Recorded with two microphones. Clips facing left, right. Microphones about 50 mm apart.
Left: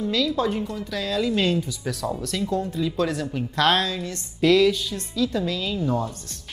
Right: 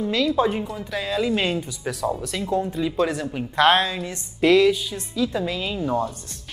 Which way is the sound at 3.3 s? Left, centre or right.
Right.